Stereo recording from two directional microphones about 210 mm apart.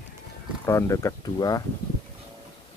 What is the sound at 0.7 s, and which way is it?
Speech, 15° left (ahead or behind).